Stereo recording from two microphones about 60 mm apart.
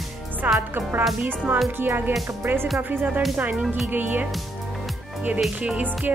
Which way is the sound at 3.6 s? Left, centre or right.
Centre.